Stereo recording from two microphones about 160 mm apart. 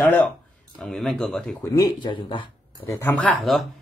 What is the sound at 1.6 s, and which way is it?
Speech, 20° left (ahead or behind).